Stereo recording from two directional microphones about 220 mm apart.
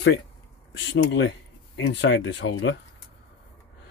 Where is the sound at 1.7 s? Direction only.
55° left (ahead or behind).